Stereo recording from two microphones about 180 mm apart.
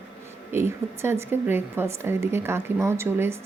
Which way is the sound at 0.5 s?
15° right (ahead or behind).